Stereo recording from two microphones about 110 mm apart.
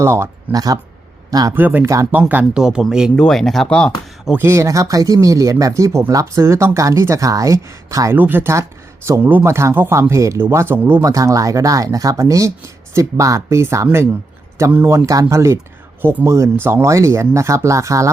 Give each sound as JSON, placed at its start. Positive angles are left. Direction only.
{"t": 0.0, "sound": "speech", "side_deg": -25}
{"t": 0.5, "sound": "speech", "side_deg": -35}
{"t": 1.5, "sound": "speech", "side_deg": -20}
{"t": 4.4, "sound": "speech", "side_deg": -25}
{"t": 14.7, "sound": "speech", "side_deg": -15}
{"t": 14.9, "sound": "speech", "side_deg": -30}